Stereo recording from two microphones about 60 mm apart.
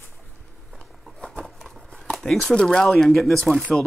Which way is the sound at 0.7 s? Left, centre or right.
Centre.